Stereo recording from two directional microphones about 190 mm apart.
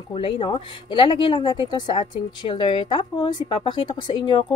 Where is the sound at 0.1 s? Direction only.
30° left (ahead or behind).